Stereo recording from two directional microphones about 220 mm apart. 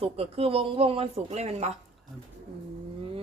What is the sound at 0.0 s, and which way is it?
Speech, 25° right (ahead or behind).